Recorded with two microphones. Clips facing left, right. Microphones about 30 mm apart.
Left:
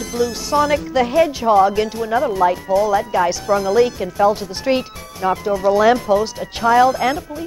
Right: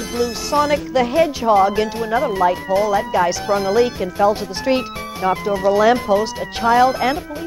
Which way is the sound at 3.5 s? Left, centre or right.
Right.